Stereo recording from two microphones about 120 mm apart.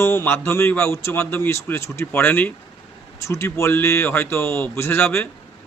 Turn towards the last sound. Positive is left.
turn(degrees=20)  # may be behind; listen again after turning